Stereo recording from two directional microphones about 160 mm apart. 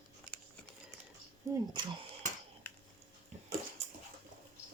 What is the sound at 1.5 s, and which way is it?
Speech, 15° right (ahead or behind).